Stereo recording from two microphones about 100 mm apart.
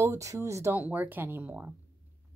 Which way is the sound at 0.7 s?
15° right (ahead or behind).